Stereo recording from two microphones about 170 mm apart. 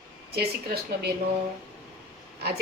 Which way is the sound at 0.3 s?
65° right (ahead or behind).